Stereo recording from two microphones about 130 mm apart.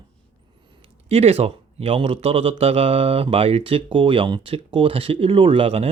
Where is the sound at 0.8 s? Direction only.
50° right (ahead or behind).